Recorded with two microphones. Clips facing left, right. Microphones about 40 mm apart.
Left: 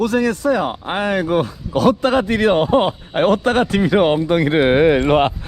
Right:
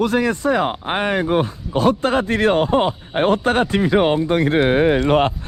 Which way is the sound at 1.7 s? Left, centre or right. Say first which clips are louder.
Left 2 dB; left.